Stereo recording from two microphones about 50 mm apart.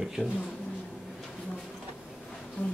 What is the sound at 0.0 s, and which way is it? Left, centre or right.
Speech, centre.